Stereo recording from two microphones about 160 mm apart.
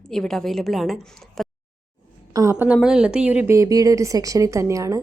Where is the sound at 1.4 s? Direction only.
Centre (ahead or behind).